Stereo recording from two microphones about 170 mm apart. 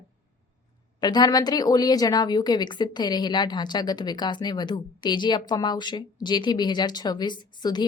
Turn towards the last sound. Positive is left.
turn(degrees=25)  # may be behind; listen again after turning